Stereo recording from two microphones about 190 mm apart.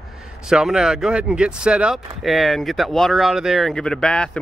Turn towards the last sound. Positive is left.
turn(degrees=5)  # may be behind; listen again after turning